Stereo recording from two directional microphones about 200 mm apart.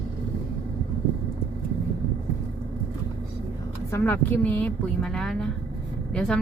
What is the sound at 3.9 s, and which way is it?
Speech, 10° left (ahead or behind).